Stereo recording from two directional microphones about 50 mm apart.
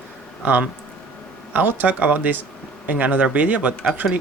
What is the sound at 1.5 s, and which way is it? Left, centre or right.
Speech, right.